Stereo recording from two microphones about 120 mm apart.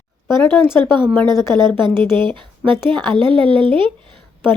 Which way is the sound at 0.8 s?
40° right (ahead or behind).